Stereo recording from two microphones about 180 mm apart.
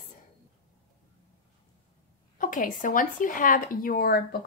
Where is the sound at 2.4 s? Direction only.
50° left (ahead or behind).